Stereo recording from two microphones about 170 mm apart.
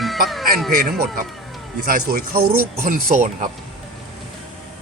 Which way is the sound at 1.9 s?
60° right (ahead or behind).